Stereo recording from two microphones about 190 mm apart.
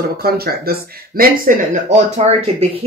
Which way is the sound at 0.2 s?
55° right (ahead or behind).